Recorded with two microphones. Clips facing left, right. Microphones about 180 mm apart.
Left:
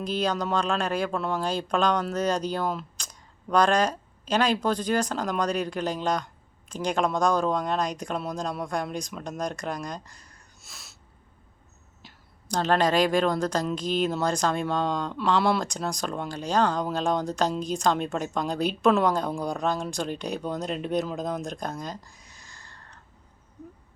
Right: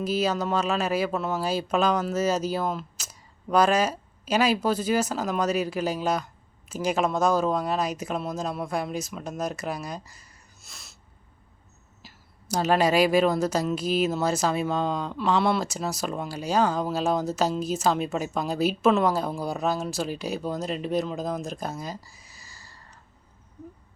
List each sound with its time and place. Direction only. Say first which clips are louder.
0.0 s speech: right 2 dB; 5° right (ahead or behind)
12.0 s speech: right 1 dB; 10° right (ahead or behind)